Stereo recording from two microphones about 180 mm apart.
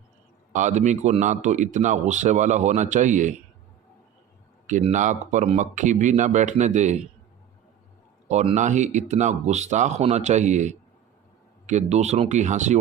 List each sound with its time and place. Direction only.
0.5 s a man's voice: 40° right (ahead or behind)
4.6 s a man's voice: 40° right (ahead or behind)
8.3 s a man's voice: 40° right (ahead or behind)